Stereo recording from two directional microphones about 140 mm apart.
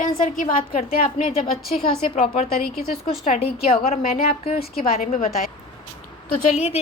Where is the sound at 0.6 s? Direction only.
45° left (ahead or behind).